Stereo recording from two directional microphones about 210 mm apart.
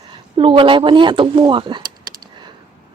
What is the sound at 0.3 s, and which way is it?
Speech, 25° right (ahead or behind).